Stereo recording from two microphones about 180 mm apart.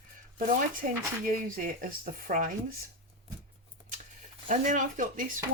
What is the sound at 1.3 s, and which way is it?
Speech, 50° right (ahead or behind).